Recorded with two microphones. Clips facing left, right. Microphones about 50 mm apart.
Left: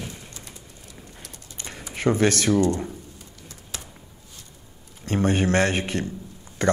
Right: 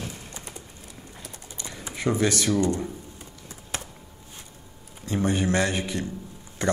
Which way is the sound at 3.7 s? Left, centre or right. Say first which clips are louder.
Right 5 dB; right.